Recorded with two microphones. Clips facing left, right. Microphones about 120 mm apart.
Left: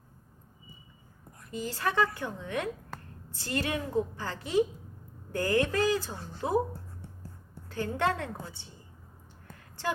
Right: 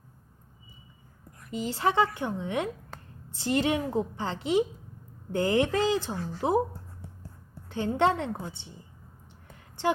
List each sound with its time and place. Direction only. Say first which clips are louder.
1.5 s a woman's voice: right 5 dB; 20° right (ahead or behind)
7.7 s a woman's voice: right 5 dB; 20° right (ahead or behind)